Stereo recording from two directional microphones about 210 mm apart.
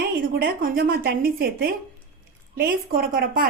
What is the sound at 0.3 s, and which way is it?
A woman's voice, 45° right (ahead or behind).